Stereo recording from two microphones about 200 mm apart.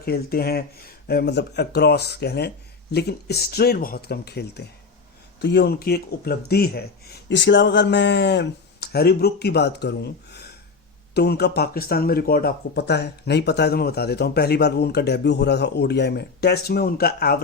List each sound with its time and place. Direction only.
0.0 s speech: 50° left (ahead or behind)